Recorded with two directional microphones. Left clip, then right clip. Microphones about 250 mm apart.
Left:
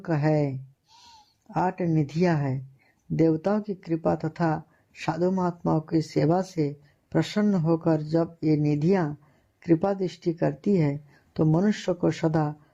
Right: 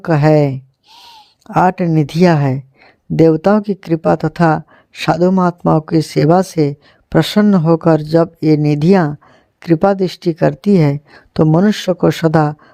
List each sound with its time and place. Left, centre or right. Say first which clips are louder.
0.0 s speech: right 14 dB; right